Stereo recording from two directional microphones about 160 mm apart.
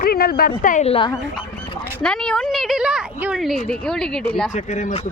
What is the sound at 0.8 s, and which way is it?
Speech, 35° left (ahead or behind).